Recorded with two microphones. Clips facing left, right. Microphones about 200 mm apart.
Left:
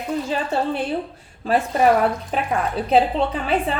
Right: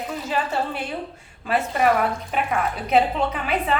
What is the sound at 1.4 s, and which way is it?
Speech, 35° left (ahead or behind).